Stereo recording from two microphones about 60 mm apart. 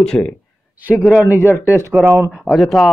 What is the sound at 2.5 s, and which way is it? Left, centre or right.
Speech, centre.